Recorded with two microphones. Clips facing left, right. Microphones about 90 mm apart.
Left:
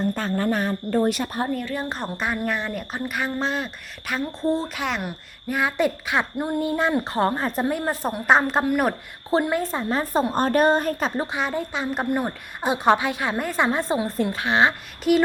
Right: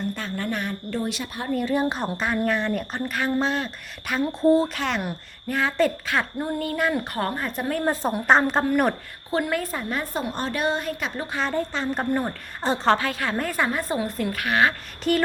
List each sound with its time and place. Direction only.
0.0 s a woman's voice: 40° left (ahead or behind)
1.6 s a woman's voice: 15° right (ahead or behind)
1.9 s speech: centre (ahead or behind)
5.5 s a woman's voice: 15° left (ahead or behind); by 7.7 s 30° left (ahead or behind)
7.7 s speech: 5° left (ahead or behind)
9.3 s a woman's voice: 25° left (ahead or behind); by 11.1 s 45° left (ahead or behind)
11.3 s a woman's voice: 10° left (ahead or behind)
15.1 s a woman's voice: 5° left (ahead or behind)